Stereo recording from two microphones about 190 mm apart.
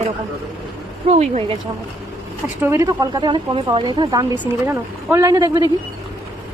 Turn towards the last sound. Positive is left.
turn(degrees=-20)  # may be behind; listen again after turning